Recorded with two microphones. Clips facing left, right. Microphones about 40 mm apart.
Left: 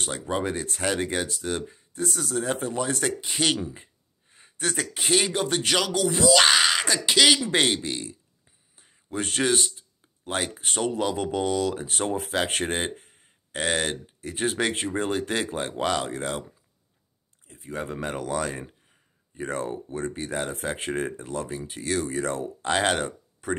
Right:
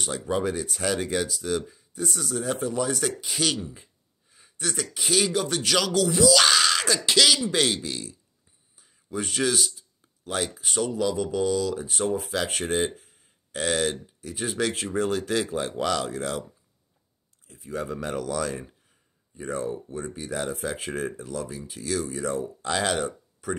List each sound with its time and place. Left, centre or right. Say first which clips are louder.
0.0 s speech: right 1 dB; left
5.8 s speech: right 4 dB; centre
6.1 s speech: left 1 dB; left
8.7 s speech: left 1 dB; left
17.5 s speech: right 1 dB; left
19.3 s speech: even; left
22.0 s speech: left 1 dB; left
22.6 s speech: left 4 dB; left